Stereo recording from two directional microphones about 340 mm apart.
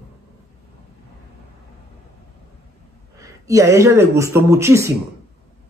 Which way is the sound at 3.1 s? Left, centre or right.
Centre.